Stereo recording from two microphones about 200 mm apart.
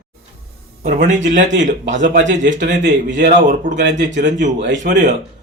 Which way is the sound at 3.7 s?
60° right (ahead or behind).